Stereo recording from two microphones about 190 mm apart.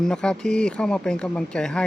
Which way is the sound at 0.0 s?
5° left (ahead or behind).